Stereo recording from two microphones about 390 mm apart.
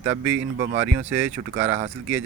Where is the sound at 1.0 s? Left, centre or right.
Centre.